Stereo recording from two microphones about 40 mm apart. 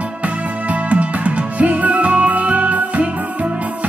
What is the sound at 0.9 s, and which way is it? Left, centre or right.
Music, right.